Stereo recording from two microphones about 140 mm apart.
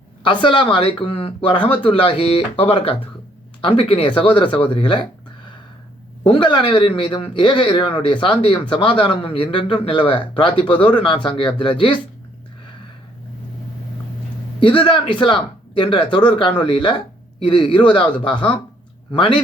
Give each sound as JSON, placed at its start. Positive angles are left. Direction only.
{"t": 0.4, "sound": "a man's voice", "side_deg": 35}
{"t": 6.2, "sound": "a man's voice", "side_deg": 35}
{"t": 14.6, "sound": "a man's voice", "side_deg": 35}